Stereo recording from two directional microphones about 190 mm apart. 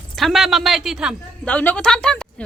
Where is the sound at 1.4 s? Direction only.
5° left (ahead or behind).